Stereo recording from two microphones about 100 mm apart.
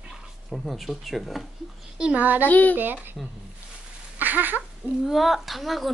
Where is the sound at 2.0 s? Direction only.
15° right (ahead or behind).